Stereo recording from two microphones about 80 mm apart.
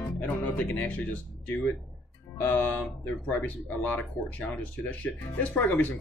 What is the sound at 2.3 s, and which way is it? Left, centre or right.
Speech, left.